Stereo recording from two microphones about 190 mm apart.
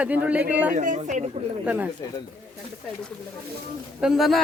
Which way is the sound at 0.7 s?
40° right (ahead or behind).